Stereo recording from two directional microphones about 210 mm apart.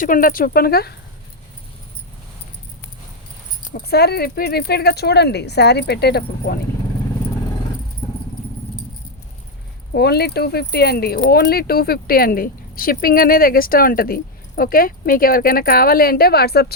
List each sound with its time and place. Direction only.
0.0 s speech: 40° left (ahead or behind)
3.6 s speech: 40° left (ahead or behind)
9.9 s speech: 50° left (ahead or behind)